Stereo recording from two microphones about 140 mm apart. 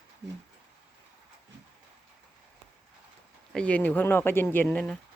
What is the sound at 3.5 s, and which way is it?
Speech, 10° left (ahead or behind).